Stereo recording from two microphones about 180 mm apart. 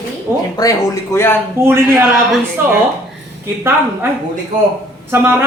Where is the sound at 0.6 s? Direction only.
20° left (ahead or behind).